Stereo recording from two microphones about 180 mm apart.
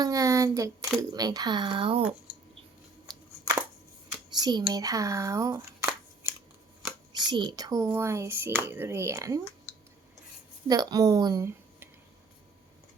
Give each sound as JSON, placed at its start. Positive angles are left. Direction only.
{"t": 0.0, "sound": "speech", "side_deg": -20}
{"t": 3.1, "sound": "a sound", "side_deg": -20}
{"t": 4.4, "sound": "speech", "side_deg": -25}
{"t": 10.7, "sound": "speech", "side_deg": -20}